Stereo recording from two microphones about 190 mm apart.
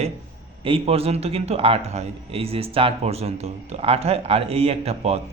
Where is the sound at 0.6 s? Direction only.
30° right (ahead or behind).